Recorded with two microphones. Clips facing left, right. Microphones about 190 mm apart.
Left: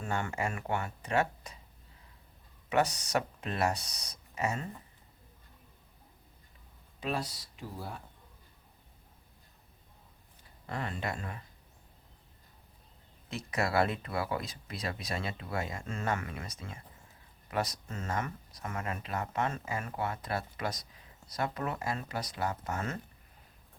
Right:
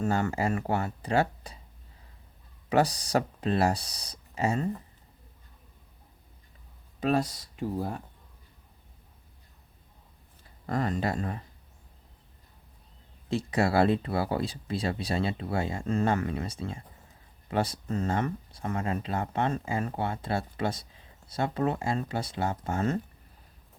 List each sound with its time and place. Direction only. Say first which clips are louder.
0.0 s speech: right 7 dB; 35° right (ahead or behind)
2.6 s speech: right 4 dB; 35° right (ahead or behind)
7.0 s speech: right 9 dB; 45° right (ahead or behind)
10.7 s speech: right 8 dB; 40° right (ahead or behind)
13.2 s speech: right 7 dB; 30° right (ahead or behind)